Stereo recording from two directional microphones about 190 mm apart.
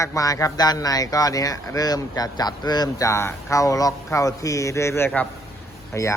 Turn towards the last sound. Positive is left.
turn(degrees=15)  # may be behind; listen again after turning